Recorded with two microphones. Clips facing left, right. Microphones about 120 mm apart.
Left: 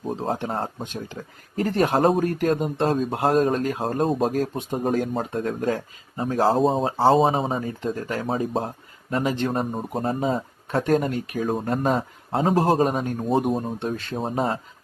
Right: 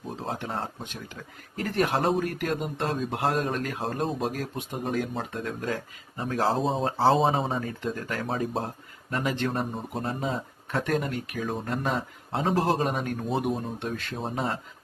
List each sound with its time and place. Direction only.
0.1 s speech: 40° left (ahead or behind)
6.5 s speech: centre (ahead or behind)
7.9 s speech: 30° left (ahead or behind)
8.3 s speech: 5° left (ahead or behind)
8.6 s speech: 30° left (ahead or behind)